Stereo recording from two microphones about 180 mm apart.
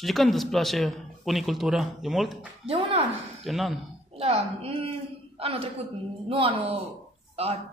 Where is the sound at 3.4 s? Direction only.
Centre (ahead or behind).